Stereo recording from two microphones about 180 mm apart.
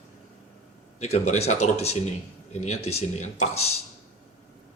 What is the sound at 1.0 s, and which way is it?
Speech, 35° left (ahead or behind).